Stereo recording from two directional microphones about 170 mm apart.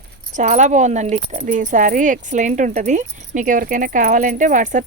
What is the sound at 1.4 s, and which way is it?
Speech, 50° right (ahead or behind).